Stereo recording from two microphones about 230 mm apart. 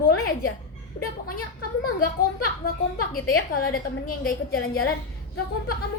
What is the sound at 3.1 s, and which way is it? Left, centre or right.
A woman's voice, left.